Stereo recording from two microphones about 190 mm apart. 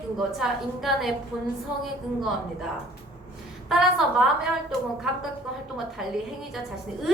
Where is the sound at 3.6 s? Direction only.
Centre (ahead or behind).